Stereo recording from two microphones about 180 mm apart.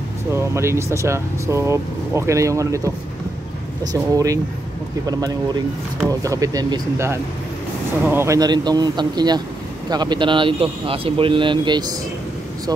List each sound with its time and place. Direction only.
0.3 s speech: 15° right (ahead or behind)